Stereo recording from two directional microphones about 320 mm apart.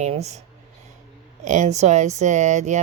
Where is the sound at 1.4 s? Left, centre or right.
Right.